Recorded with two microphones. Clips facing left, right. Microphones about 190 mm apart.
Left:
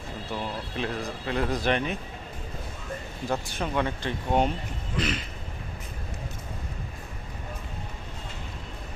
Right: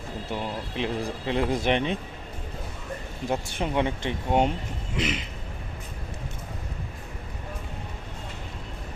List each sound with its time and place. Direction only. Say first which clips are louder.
0.3 s speech: right 1 dB; 20° right (ahead or behind)
3.2 s speech: right 2 dB; 20° right (ahead or behind)